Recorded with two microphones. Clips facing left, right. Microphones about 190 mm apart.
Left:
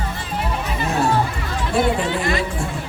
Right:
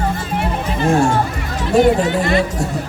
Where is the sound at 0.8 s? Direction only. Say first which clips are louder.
Right 5 dB; 50° right (ahead or behind).